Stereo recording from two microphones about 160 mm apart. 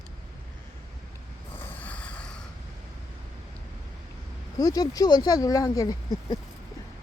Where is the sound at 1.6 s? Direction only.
10° left (ahead or behind).